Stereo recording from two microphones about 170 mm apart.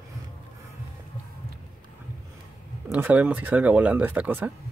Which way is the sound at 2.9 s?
10° right (ahead or behind).